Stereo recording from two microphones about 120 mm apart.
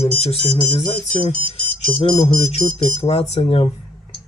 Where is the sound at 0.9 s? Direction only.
85° left.